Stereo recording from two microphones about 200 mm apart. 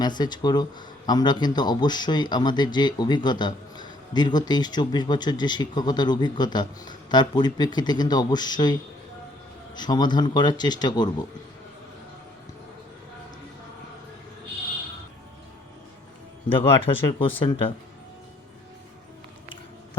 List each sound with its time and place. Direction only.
0.0 s speech: 20° left (ahead or behind)
16.6 s speech: 25° left (ahead or behind)